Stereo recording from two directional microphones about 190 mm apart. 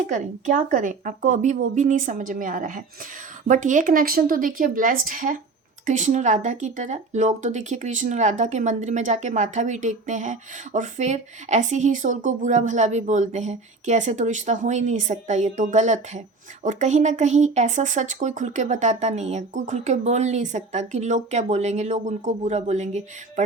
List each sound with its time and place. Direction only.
0.1 s speech: 45° right (ahead or behind)